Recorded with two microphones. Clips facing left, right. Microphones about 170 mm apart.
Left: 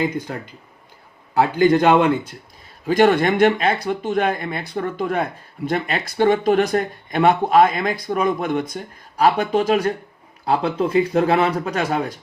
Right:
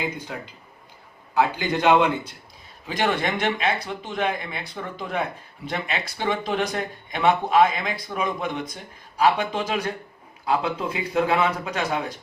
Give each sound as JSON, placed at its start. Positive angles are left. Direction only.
{"t": 0.3, "sound": "speech", "side_deg": 50}
{"t": 3.2, "sound": "speech", "side_deg": 55}